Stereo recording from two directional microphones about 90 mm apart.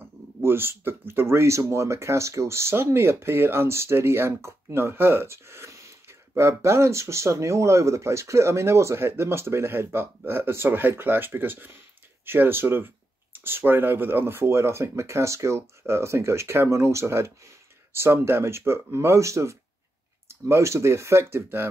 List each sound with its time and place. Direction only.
0.4 s speech: 25° right (ahead or behind)